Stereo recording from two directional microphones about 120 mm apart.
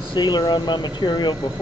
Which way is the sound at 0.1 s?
35° left (ahead or behind).